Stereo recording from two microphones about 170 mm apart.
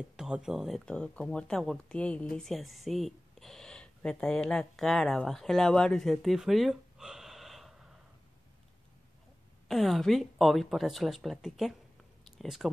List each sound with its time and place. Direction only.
0.1 s speech: 5° right (ahead or behind)
9.7 s speech: centre (ahead or behind)